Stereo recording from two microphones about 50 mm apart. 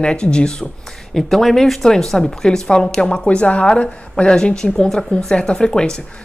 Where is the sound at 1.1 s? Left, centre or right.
Centre.